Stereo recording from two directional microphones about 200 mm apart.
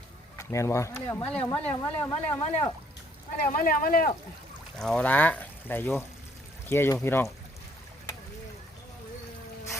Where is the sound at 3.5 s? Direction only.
45° left (ahead or behind).